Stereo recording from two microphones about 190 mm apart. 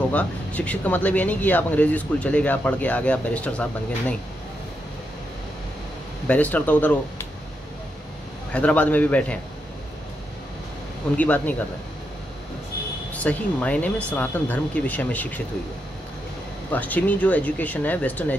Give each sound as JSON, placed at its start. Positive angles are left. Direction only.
{"t": 0.1, "sound": "speech", "side_deg": 5}
{"t": 6.2, "sound": "speech", "side_deg": 10}
{"t": 8.5, "sound": "speech", "side_deg": 5}
{"t": 11.1, "sound": "speech", "side_deg": 10}
{"t": 13.1, "sound": "speech", "side_deg": 5}
{"t": 16.7, "sound": "speech", "side_deg": 10}